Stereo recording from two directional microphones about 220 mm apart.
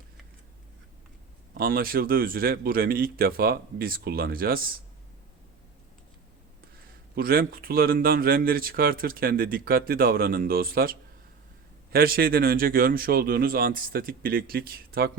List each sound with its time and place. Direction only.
1.5 s speech: 40° right (ahead or behind)
7.2 s speech: 40° right (ahead or behind)